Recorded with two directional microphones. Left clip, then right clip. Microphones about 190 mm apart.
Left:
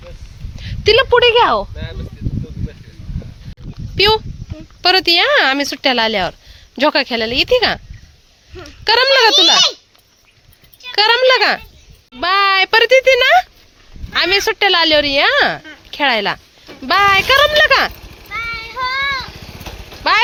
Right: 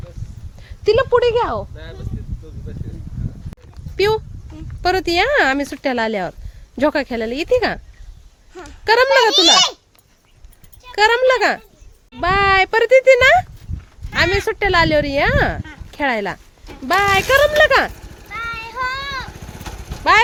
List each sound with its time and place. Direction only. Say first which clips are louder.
0.9 s a woman's voice: left 4 dB; 10° left (ahead or behind)
1.7 s a sound: left 5 dB; 35° left (ahead or behind)
3.9 s speech: left 4 dB; 10° right (ahead or behind)
10.9 s speech: left 3 dB; 10° right (ahead or behind)
18.7 s child singing: left 7 dB; 10° right (ahead or behind)
20.1 s speech: right 1 dB; 5° right (ahead or behind)